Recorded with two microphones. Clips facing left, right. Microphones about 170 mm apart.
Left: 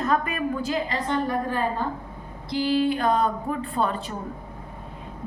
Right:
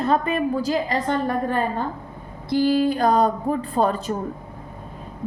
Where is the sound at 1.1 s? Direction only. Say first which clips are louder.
Right 3 dB; 50° right (ahead or behind).